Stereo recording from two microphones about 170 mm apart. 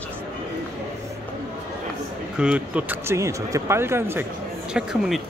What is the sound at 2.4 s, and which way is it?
A man's voice, 5° right (ahead or behind).